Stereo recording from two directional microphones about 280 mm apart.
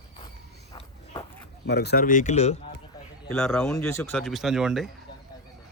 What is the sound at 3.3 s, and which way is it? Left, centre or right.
Speech, centre.